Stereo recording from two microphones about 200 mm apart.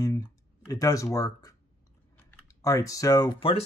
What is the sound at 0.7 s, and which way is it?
Speech, 15° left (ahead or behind).